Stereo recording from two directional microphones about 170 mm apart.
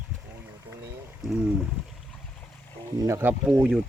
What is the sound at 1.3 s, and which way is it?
Speech, 10° right (ahead or behind).